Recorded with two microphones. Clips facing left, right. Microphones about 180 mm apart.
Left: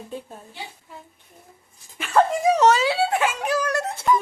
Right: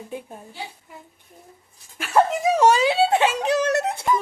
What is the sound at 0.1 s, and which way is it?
Speech, 15° right (ahead or behind).